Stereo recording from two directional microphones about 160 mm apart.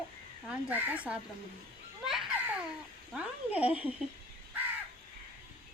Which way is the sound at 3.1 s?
10° right (ahead or behind).